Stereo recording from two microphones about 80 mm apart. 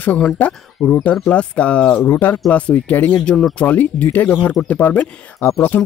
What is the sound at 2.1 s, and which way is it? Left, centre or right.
Speech, left.